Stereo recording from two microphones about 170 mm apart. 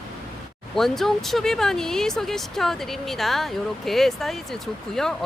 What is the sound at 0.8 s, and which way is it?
Speech, centre (ahead or behind).